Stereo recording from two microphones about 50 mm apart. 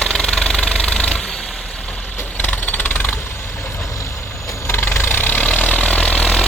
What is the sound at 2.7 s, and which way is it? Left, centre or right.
Vehicle, left.